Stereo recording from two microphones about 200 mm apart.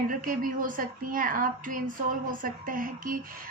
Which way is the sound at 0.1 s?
45° right (ahead or behind).